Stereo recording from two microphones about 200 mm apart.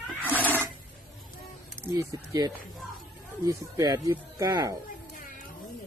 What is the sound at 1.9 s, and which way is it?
Speech, 15° right (ahead or behind).